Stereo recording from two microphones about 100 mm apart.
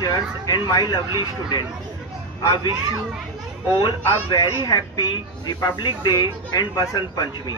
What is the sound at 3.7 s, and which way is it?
Speech, 55° left (ahead or behind).